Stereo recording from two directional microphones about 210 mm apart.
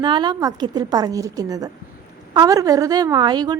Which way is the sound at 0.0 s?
20° right (ahead or behind).